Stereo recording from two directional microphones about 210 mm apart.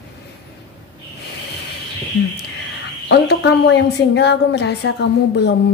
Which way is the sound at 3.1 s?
55° left (ahead or behind).